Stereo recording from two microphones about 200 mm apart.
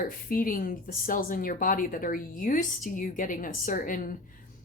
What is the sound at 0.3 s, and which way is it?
Speech, 45° left (ahead or behind).